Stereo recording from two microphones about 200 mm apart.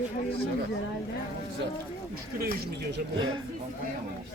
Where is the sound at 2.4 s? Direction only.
50° right (ahead or behind).